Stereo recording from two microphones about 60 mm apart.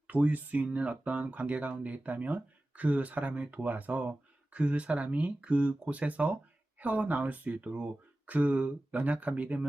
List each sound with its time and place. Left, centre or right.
0.1 s speech: right